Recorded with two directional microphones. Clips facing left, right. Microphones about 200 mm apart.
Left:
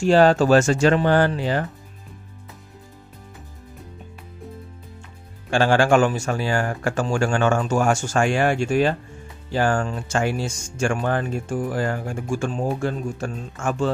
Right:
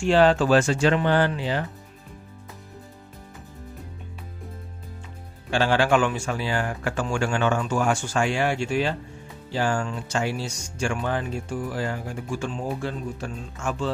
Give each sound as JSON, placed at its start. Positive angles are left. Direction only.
{"t": 0.0, "sound": "speech", "side_deg": 40}
{"t": 5.5, "sound": "speech", "side_deg": 45}